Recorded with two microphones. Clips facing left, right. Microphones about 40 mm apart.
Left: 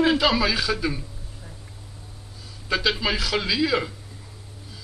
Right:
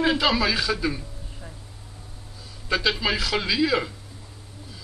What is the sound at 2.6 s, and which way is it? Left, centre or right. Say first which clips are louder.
A man's voice: even; centre.